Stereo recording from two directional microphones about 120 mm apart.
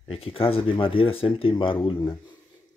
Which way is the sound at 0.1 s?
50° left (ahead or behind).